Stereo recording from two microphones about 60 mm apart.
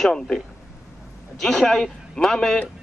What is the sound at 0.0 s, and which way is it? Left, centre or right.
Speech, centre.